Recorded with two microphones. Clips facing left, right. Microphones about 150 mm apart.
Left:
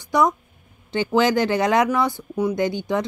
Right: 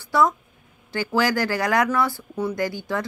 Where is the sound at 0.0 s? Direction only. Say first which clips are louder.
Left 1 dB; 20° left (ahead or behind).